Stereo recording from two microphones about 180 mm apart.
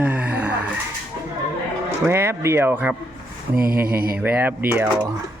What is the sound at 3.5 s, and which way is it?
Mantra, 55° right (ahead or behind).